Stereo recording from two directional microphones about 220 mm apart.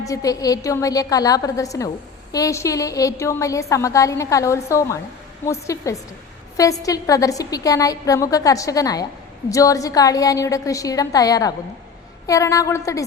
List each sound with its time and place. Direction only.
0.1 s a woman's voice: 15° left (ahead or behind)